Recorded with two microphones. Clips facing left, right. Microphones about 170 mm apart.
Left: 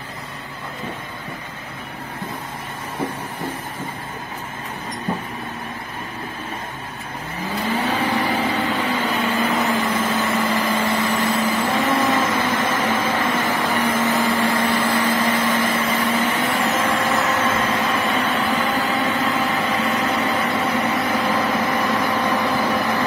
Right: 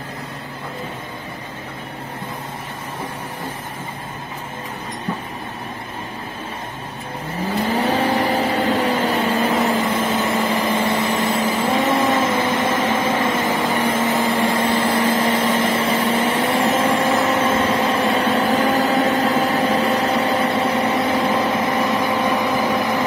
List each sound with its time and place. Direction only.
7.7 s vehicle: 40° right (ahead or behind); by 23.0 s 15° right (ahead or behind)